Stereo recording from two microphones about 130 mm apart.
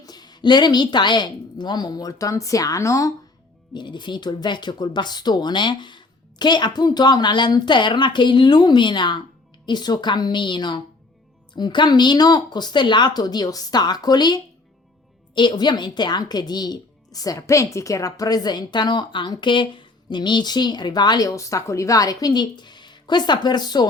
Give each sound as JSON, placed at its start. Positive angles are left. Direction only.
{"t": 0.0, "sound": "speech", "side_deg": 30}
{"t": 3.8, "sound": "speech", "side_deg": 35}